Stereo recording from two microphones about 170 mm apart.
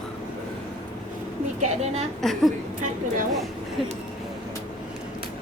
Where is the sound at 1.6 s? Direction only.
40° right (ahead or behind).